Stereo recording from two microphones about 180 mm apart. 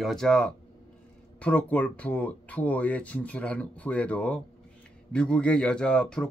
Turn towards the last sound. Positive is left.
turn(degrees=5)  # may be behind; listen again after turning